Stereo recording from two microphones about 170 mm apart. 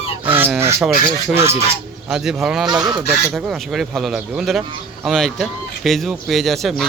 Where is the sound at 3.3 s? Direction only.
5° right (ahead or behind).